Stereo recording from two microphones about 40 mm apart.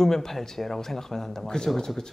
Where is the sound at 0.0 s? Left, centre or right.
Centre.